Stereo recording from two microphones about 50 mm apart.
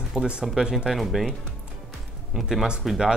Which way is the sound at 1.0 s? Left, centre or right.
Centre.